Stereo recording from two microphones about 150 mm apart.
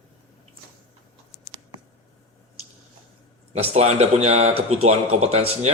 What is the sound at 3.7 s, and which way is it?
Speech, 45° right (ahead or behind).